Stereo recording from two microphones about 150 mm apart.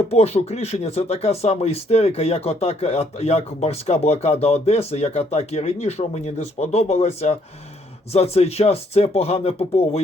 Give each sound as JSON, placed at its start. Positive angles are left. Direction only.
{"t": 0.1, "sound": "speech", "side_deg": 45}